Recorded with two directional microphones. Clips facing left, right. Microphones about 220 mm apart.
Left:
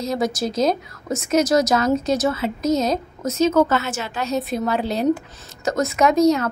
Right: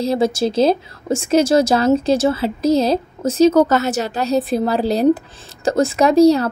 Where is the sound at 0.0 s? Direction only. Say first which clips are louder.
Right 5 dB; 30° right (ahead or behind).